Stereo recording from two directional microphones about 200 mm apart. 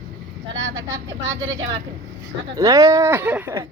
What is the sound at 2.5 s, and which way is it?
Speech, 15° right (ahead or behind).